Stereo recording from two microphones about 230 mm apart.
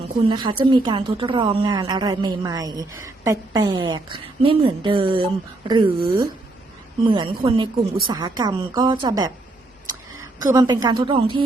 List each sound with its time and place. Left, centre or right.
0.3 s a woman's voice: centre
10.4 s a woman's voice: centre